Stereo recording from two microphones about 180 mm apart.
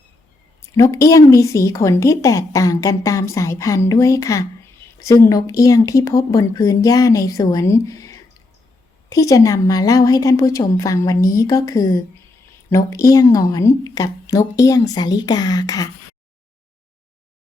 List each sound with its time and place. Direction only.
0.8 s a woman's voice: 20° left (ahead or behind)